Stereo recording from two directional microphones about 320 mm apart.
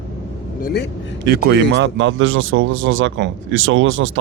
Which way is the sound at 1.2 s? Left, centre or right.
Right.